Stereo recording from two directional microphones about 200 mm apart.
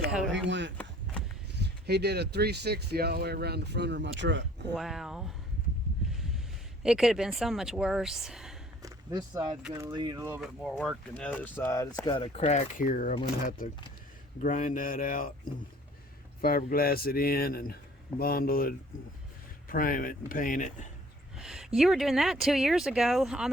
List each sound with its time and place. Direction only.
0.3 s speech: 65° right (ahead or behind)
4.7 s speech: centre (ahead or behind)
6.8 s speech: centre (ahead or behind)
8.8 s a sound: 15° right (ahead or behind)
9.7 s speech: 20° right (ahead or behind)
10.4 s speech: centre (ahead or behind); by 13.1 s 40° left (ahead or behind)
14.4 s speech: 40° left (ahead or behind)
16.4 s speech: 45° left (ahead or behind)
21.3 s speech: centre (ahead or behind)